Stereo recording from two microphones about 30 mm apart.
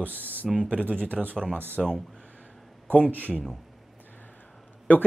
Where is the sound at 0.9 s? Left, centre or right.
Left.